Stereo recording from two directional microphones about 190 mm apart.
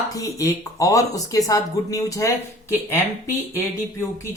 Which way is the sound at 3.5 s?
15° left (ahead or behind).